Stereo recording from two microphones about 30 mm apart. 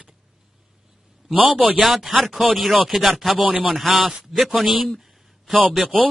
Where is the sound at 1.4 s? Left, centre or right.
Right.